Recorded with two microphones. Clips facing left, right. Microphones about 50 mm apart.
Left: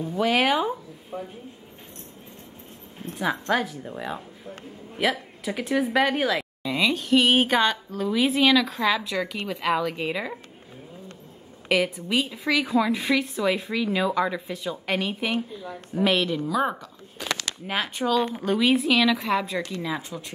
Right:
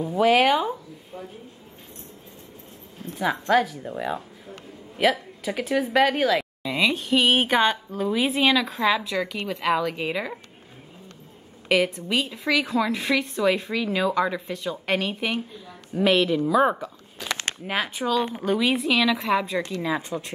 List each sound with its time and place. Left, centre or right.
0.0 s speech: centre
1.1 s speech: left
3.2 s speech: centre
11.9 s speech: centre
20.1 s speech: right